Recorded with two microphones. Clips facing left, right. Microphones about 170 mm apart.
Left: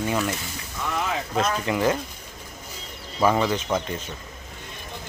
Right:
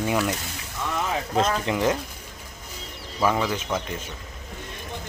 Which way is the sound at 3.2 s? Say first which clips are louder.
Left 2 dB; 15° left (ahead or behind).